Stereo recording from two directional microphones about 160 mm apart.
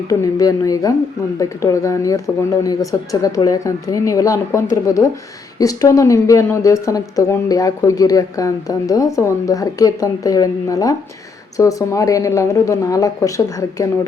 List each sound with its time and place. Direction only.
0.1 s a woman's voice: 20° left (ahead or behind)